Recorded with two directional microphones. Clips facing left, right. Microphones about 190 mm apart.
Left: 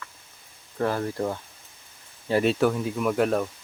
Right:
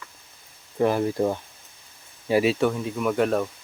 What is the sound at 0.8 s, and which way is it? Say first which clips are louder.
Speech: right 4 dB; 15° right (ahead or behind).